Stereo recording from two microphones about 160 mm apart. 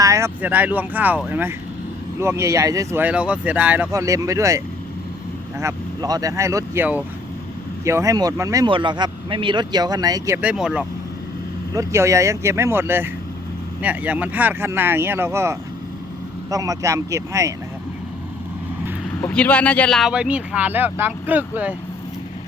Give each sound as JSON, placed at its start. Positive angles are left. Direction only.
{"t": 0.0, "sound": "speech", "side_deg": -20}
{"t": 3.9, "sound": "speech", "side_deg": -20}
{"t": 10.4, "sound": "speech", "side_deg": -5}
{"t": 11.7, "sound": "speech", "side_deg": -20}
{"t": 19.3, "sound": "speech", "side_deg": 10}